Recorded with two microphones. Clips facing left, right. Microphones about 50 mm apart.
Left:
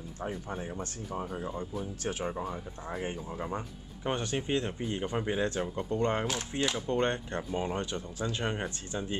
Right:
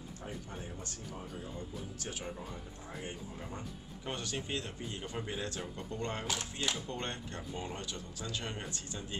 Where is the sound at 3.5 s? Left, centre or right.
Left.